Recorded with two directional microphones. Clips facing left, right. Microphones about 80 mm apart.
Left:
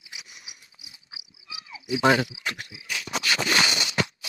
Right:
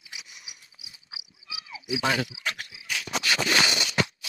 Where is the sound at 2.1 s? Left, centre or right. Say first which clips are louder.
Left 2 dB; left.